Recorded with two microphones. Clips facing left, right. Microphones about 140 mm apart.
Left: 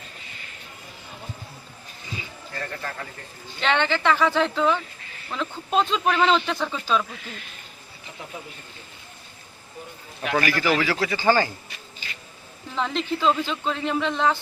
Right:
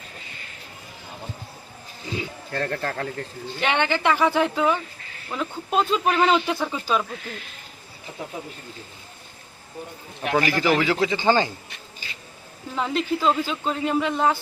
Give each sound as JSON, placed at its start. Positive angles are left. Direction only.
{"t": 2.1, "sound": "speech", "side_deg": -75}
{"t": 3.6, "sound": "speech", "side_deg": -15}
{"t": 10.3, "sound": "speech", "side_deg": -20}
{"t": 12.7, "sound": "speech", "side_deg": -5}